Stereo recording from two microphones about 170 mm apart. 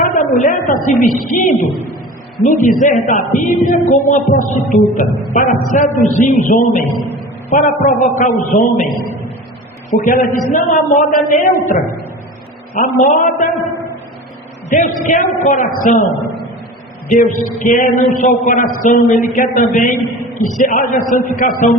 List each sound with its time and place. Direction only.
0.0 s a woman's voice: 55° left (ahead or behind)
10.0 s speech: 50° left (ahead or behind)
12.8 s speech: 50° left (ahead or behind)
14.7 s speech: 45° left (ahead or behind)
17.1 s speech: 50° left (ahead or behind)